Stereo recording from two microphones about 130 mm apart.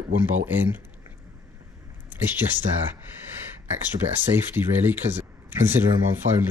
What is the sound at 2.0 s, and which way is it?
Speech, 15° right (ahead or behind).